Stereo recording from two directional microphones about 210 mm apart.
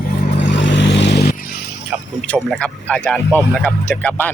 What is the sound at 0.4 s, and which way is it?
Vehicle, 55° left (ahead or behind).